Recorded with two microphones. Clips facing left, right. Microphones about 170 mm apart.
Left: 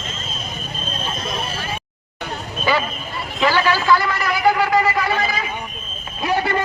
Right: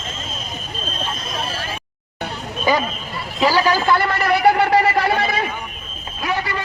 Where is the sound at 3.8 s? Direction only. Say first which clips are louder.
Left 1 dB; 55° right (ahead or behind).